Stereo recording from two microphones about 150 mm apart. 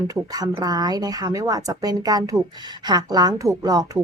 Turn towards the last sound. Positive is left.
turn(degrees=-25)  # may be behind; listen again after turning